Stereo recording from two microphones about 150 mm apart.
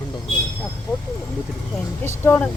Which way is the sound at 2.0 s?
15° left (ahead or behind).